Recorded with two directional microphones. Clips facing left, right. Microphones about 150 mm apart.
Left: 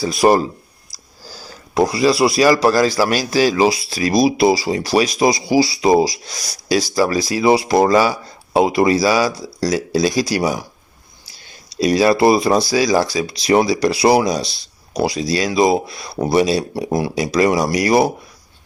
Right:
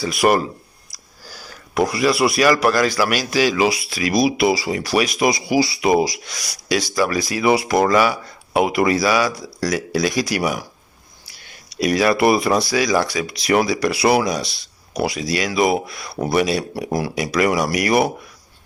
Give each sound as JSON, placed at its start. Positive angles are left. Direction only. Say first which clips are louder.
{"t": 0.0, "sound": "speech", "louder": "left 3 dB", "side_deg": 30}
{"t": 1.3, "sound": "a sound", "louder": "left 3 dB", "side_deg": 35}
{"t": 1.8, "sound": "speech", "louder": "left 3 dB", "side_deg": 30}